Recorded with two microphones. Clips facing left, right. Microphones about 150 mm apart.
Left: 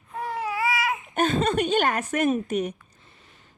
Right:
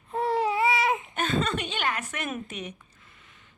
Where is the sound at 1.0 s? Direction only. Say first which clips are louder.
Left 5 dB; 45° left (ahead or behind).